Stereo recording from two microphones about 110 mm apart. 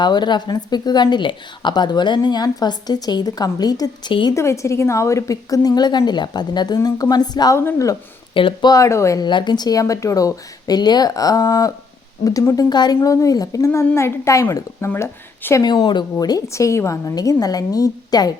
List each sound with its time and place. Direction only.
0.0 s a woman's voice: 40° left (ahead or behind)
4.4 s a woman's voice: 25° left (ahead or behind)
7.5 s a woman's voice: 25° left (ahead or behind)
8.3 s speech: 50° left (ahead or behind)
8.7 s a woman's voice: 30° left (ahead or behind)
9.2 s a woman's voice: 45° left (ahead or behind); by 15.6 s 25° left (ahead or behind)
15.6 s a woman's voice: 45° left (ahead or behind)
16.1 s a woman's voice: 30° left (ahead or behind)